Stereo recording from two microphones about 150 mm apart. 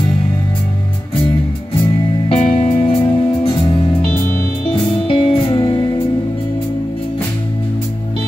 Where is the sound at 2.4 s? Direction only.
35° left (ahead or behind).